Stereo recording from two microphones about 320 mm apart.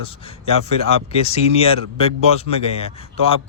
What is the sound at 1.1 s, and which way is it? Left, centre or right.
Speech, centre.